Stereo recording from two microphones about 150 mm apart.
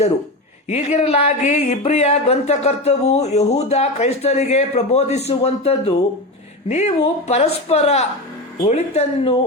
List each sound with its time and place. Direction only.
0.7 s speech: 45° left (ahead or behind)